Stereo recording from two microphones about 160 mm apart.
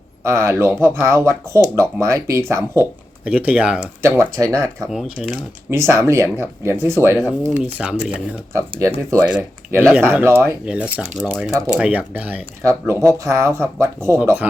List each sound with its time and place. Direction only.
0.2 s speech: 15° right (ahead or behind)
5.1 s speech: 5° left (ahead or behind)
5.7 s speech: 15° right (ahead or behind)
8.8 s speech: 20° right (ahead or behind)
9.2 s speech: 5° right (ahead or behind)